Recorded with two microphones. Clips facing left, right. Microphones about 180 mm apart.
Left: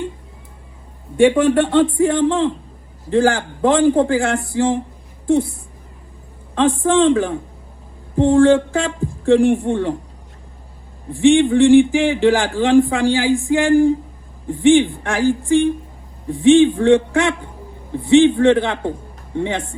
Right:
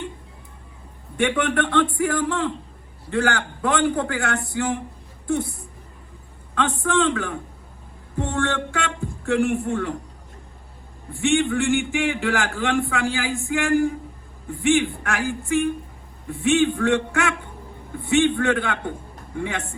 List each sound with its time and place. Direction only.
1.4 s a man's voice: 30° left (ahead or behind)
6.5 s speech: 30° left (ahead or behind)
11.4 s a man's voice: 35° left (ahead or behind)